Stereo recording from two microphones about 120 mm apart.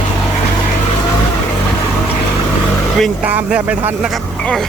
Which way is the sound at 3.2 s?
15° right (ahead or behind).